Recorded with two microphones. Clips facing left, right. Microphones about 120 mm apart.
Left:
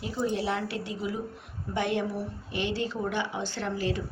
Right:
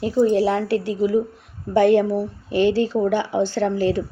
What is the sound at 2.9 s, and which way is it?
Speech, 70° right (ahead or behind).